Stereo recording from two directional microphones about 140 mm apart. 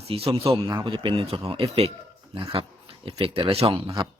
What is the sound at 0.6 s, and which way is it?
Speech, 25° right (ahead or behind).